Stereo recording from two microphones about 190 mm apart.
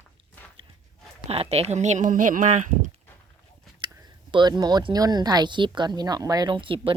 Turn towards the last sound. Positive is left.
turn(degrees=-25)  # may be behind; listen again after turning